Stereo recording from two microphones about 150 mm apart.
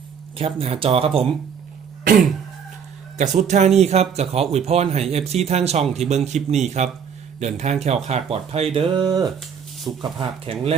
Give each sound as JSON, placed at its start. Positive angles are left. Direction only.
{"t": 0.3, "sound": "speech", "side_deg": -40}
{"t": 3.2, "sound": "speech", "side_deg": -50}